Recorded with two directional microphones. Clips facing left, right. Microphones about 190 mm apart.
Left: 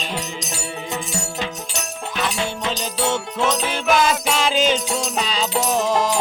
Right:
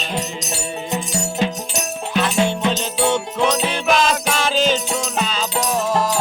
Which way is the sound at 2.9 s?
20° right (ahead or behind).